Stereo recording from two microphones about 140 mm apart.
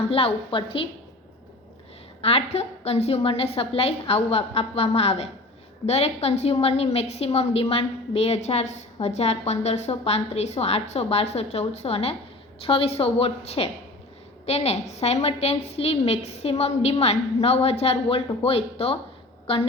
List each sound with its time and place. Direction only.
0.1 s a woman's voice: 45° left (ahead or behind)
2.2 s a woman's voice: 45° left (ahead or behind)